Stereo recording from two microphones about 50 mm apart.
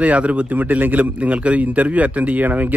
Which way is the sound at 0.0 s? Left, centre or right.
Right.